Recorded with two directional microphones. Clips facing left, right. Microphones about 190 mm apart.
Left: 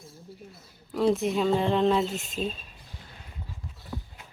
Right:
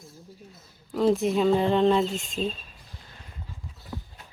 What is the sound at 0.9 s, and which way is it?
Speech, centre (ahead or behind).